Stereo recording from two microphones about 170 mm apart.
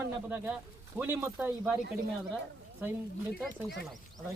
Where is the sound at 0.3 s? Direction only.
10° right (ahead or behind).